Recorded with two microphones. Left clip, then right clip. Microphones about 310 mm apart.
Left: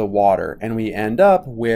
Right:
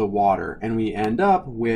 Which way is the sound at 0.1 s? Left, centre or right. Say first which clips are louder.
Left 4 dB; centre.